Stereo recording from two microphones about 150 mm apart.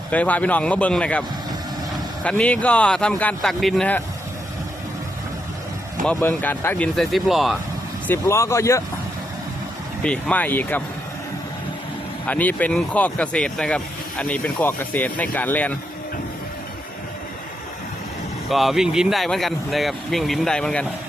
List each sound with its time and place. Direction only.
0.1 s speech: 10° left (ahead or behind)
2.2 s speech: 10° left (ahead or behind)
6.1 s speech: 15° left (ahead or behind)
8.0 s speech: 15° left (ahead or behind)
10.0 s speech: 5° left (ahead or behind)
12.3 s speech: 10° left (ahead or behind)
18.4 s speech: centre (ahead or behind)